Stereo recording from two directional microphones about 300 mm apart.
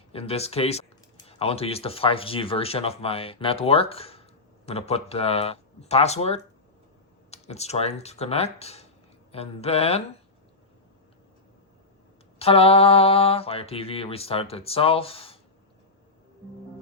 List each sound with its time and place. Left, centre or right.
0.1 s speech: centre
12.4 s speech: centre